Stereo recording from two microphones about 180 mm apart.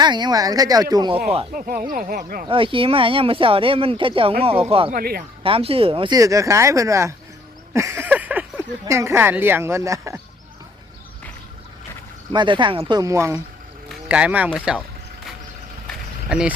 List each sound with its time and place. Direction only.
0.0 s speech: 25° right (ahead or behind)
1.5 s speech: 50° right (ahead or behind)
2.5 s speech: 30° right (ahead or behind)
4.9 s speech: 55° right (ahead or behind)
5.4 s speech: 30° right (ahead or behind)
12.3 s speech: 25° right (ahead or behind)
13.0 s speech: 15° right (ahead or behind)
16.3 s speech: 5° right (ahead or behind)